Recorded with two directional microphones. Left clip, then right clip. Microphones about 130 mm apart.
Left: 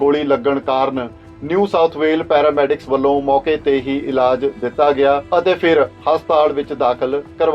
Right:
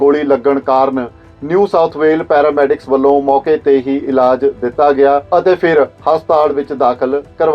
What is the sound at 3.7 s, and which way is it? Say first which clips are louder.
Speech: right 5 dB; 45° right (ahead or behind).